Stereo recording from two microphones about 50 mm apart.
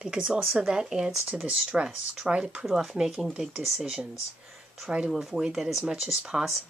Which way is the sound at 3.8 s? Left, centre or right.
Centre.